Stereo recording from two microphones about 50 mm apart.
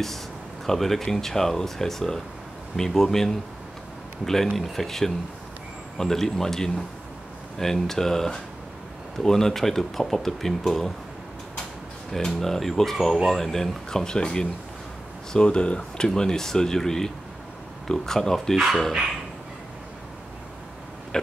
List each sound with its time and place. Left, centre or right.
0.7 s speech: centre
4.5 s speech: centre
12.1 s speech: centre